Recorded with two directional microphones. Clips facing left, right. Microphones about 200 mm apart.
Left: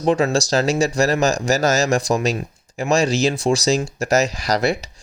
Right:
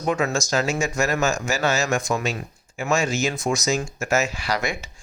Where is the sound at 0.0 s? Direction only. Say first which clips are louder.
Left 6 dB; 30° left (ahead or behind).